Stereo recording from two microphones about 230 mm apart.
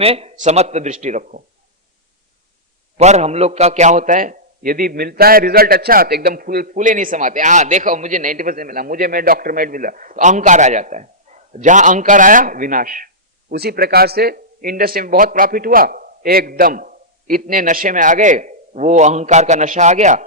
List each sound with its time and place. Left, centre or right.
0.0 s speech: right
3.0 s a man's voice: right